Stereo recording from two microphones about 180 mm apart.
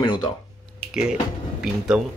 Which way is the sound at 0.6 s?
Centre (ahead or behind).